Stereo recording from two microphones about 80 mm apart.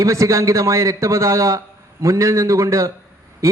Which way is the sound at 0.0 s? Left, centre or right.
Right.